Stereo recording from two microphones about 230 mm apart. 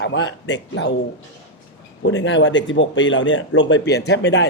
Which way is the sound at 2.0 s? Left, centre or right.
Left.